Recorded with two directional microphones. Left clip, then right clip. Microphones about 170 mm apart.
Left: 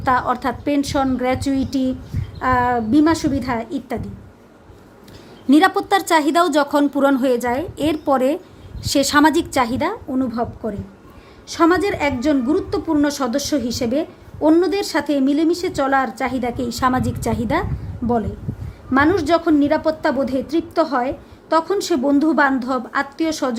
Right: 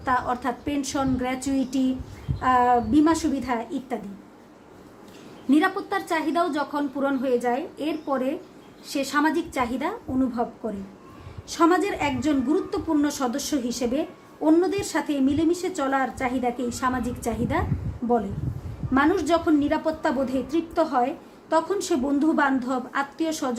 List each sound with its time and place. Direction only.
0.0 s a woman's voice: 50° left (ahead or behind)
5.5 s a woman's voice: 60° left (ahead or behind)
11.4 s a woman's voice: 40° left (ahead or behind); by 18.2 s 55° left (ahead or behind)
18.9 s a woman's voice: 40° left (ahead or behind)